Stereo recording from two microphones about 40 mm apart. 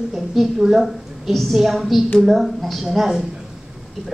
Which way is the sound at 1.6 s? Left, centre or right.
Centre.